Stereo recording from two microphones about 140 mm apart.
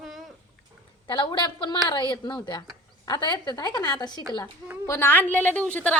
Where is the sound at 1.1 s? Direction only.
35° left (ahead or behind).